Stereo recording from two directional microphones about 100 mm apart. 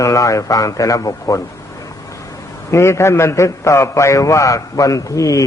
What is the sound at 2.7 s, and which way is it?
A man's voice, 30° left (ahead or behind).